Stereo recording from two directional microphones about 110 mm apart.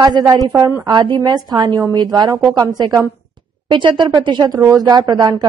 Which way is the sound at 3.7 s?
45° right (ahead or behind).